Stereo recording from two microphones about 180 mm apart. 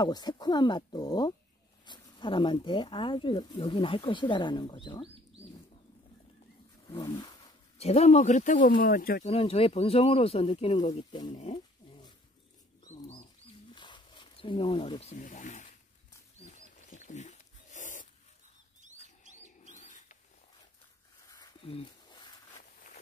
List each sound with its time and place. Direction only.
0.0 s speech: 25° left (ahead or behind)
6.9 s roaring cats: 20° left (ahead or behind)
7.8 s speech: 35° left (ahead or behind); by 9.3 s 50° left (ahead or behind)
9.3 s speech: 35° left (ahead or behind)
12.8 s dog: 35° left (ahead or behind)
13.7 s wild animals: 25° left (ahead or behind); by 18.0 s 45° left (ahead or behind)
19.6 s rodents: 40° left (ahead or behind)
21.3 s a sound: 25° left (ahead or behind)